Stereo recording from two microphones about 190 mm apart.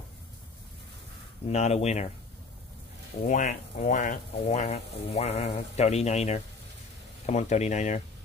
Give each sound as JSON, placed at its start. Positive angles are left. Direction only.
{"t": 1.5, "sound": "speech", "side_deg": 35}
{"t": 3.3, "sound": "speech", "side_deg": 40}